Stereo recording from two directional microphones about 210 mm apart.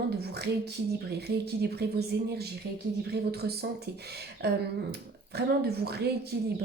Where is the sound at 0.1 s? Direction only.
50° right (ahead or behind).